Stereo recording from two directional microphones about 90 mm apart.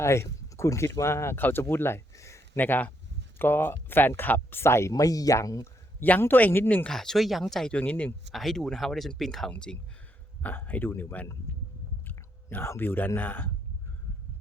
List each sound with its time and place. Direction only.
0.0 s speech: 30° left (ahead or behind)
2.6 s speech: 20° left (ahead or behind); by 5.6 s 40° left (ahead or behind)
6.0 s speech: 20° left (ahead or behind)
6.8 s speech: 5° left (ahead or behind)
8.3 s speech: centre (ahead or behind)
10.4 s speech: 20° left (ahead or behind)